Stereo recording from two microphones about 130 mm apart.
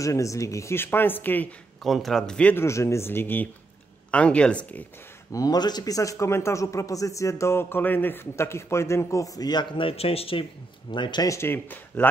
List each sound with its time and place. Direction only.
0.0 s a man's voice: 25° left (ahead or behind)
1.8 s speech: centre (ahead or behind)
2.5 s a man's voice: 20° left (ahead or behind)
5.3 s a man's voice: 30° left (ahead or behind); by 10.4 s 45° left (ahead or behind)
10.9 s speech: 35° left (ahead or behind)
11.3 s speech: 15° left (ahead or behind)